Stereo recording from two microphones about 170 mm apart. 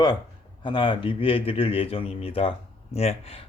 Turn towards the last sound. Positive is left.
turn(degrees=35)  # may be behind; listen again after turning